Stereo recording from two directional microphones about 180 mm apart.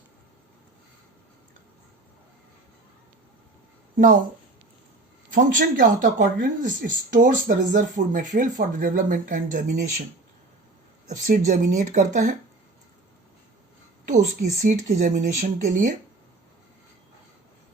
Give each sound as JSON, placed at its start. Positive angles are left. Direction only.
{"t": 3.9, "sound": "speech", "side_deg": -50}
{"t": 5.3, "sound": "speech", "side_deg": -50}
{"t": 11.1, "sound": "speech", "side_deg": -45}
{"t": 14.1, "sound": "speech", "side_deg": -50}